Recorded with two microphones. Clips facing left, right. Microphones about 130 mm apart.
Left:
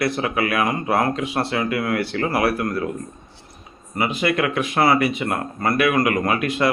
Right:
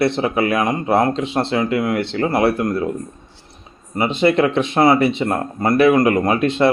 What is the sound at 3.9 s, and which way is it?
Speech, 25° right (ahead or behind).